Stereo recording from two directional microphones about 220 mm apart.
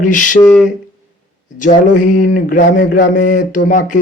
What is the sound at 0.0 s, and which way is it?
Mantra, 35° left (ahead or behind).